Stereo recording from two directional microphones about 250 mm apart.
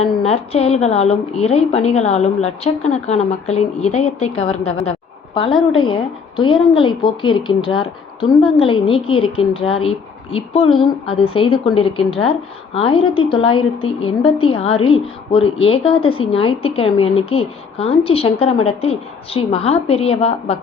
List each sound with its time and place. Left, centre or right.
0.0 s a woman's voice: left
5.9 s a woman's voice: centre
10.7 s a woman's voice: centre
11.1 s a woman's voice: left